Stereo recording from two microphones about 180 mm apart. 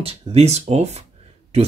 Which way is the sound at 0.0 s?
35° right (ahead or behind).